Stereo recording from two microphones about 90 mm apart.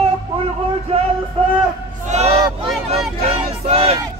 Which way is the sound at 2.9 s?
90° right.